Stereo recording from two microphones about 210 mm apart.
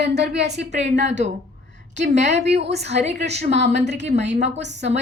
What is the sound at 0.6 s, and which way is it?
A woman's voice, 35° right (ahead or behind).